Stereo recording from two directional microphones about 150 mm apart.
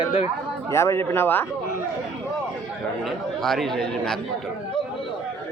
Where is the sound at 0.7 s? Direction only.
20° left (ahead or behind).